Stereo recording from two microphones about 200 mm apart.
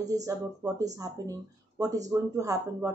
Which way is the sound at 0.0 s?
15° right (ahead or behind).